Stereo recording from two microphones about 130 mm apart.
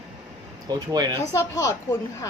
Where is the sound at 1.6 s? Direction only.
25° left (ahead or behind).